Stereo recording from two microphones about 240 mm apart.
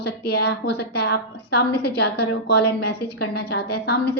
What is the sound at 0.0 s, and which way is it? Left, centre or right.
A woman's voice, left.